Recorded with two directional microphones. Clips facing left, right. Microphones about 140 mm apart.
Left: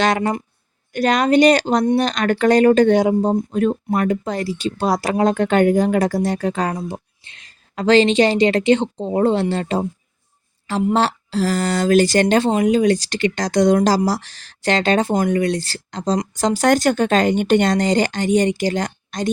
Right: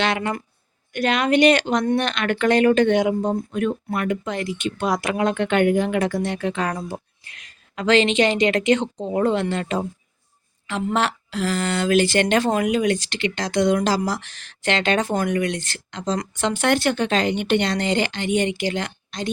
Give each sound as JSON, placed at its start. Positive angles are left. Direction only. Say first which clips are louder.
{"t": 0.0, "sound": "a woman's voice", "louder": "left 5 dB", "side_deg": 40}
{"t": 6.7, "sound": "a woman's voice", "louder": "left 3 dB", "side_deg": 20}
{"t": 10.9, "sound": "a woman's voice", "louder": "left 4 dB", "side_deg": 30}